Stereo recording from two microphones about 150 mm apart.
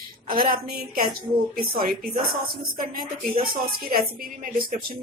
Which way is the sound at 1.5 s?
75° right (ahead or behind).